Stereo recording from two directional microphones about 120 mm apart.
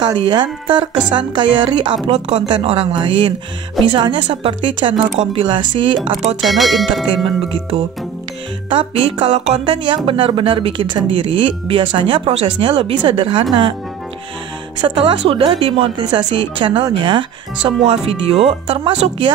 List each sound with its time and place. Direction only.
0.0 s speech: 40° right (ahead or behind)
2.0 s speech: 60° right (ahead or behind)
2.4 s speech: 50° right (ahead or behind)
6.4 s speech: centre (ahead or behind)
7.2 s speech: 50° right (ahead or behind)
9.8 s speech: 45° right (ahead or behind)
14.8 s speech: 50° right (ahead or behind)